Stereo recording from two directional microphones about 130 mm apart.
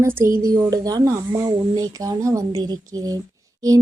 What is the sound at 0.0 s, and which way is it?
Speech, 20° right (ahead or behind).